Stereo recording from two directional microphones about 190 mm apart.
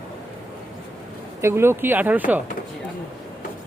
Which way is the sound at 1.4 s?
15° right (ahead or behind).